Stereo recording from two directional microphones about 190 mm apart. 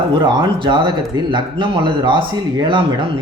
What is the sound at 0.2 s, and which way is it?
Speech, 25° right (ahead or behind).